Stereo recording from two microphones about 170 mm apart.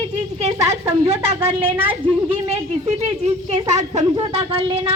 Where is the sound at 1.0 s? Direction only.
35° right (ahead or behind).